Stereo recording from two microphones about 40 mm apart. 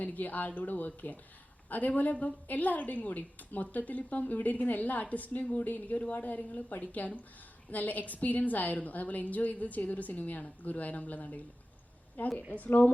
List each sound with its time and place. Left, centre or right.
0.0 s a woman's voice: left
5.5 s a woman's voice: left
5.9 s a woman's voice: left
12.5 s a woman's voice: left